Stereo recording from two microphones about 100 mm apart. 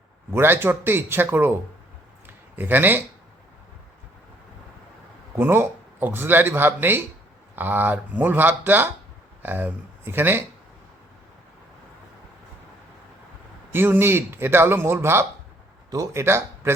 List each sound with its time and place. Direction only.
0.3 s speech: 25° right (ahead or behind)
2.2 s a sound: 20° right (ahead or behind)
5.3 s speech: 25° right (ahead or behind)
13.7 s speech: 20° right (ahead or behind)